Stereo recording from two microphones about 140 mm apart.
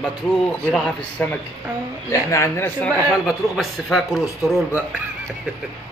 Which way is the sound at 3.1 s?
Centre (ahead or behind).